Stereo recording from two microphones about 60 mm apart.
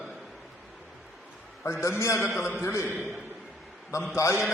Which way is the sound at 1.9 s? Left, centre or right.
Left.